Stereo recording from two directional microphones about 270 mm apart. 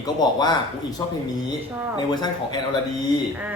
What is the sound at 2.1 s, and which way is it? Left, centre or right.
Speech, centre.